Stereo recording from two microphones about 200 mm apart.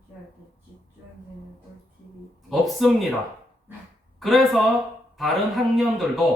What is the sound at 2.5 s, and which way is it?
Speech, centre (ahead or behind).